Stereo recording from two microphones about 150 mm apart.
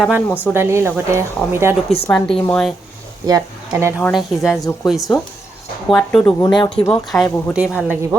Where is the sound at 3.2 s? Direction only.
20° right (ahead or behind).